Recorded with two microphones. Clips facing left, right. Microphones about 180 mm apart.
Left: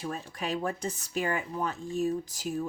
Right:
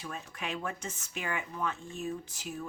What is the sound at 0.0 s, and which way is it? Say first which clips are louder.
Speech: left 5 dB; 35° left (ahead or behind).